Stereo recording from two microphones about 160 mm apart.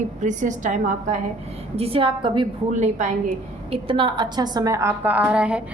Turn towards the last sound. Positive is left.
turn(degrees=-5)  # may be behind; listen again after turning